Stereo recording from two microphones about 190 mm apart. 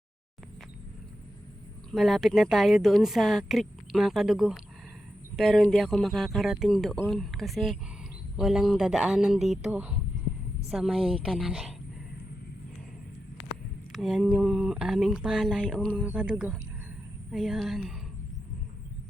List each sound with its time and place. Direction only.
1.9 s speech: centre (ahead or behind)
13.9 s speech: centre (ahead or behind)
16.0 s speech: 5° right (ahead or behind)